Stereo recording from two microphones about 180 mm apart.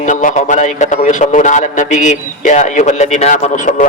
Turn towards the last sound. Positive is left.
turn(degrees=45)  # may be behind; listen again after turning